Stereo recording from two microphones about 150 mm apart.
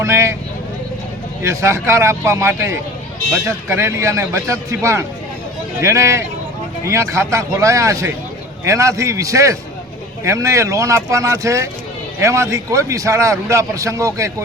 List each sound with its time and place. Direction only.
0.0 s a man's voice: 20° right (ahead or behind)
1.4 s a man's voice: 20° right (ahead or behind)